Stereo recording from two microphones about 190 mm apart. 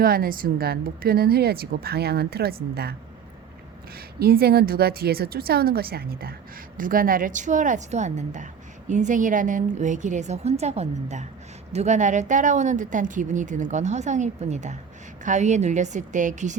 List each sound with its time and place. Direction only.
0.0 s speech: 50° right (ahead or behind)
3.9 s speech: 55° right (ahead or behind)